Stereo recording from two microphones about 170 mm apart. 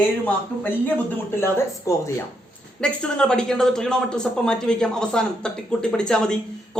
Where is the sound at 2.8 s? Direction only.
5° left (ahead or behind).